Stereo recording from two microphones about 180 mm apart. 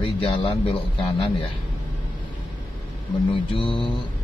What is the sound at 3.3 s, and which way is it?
Speech, 30° left (ahead or behind).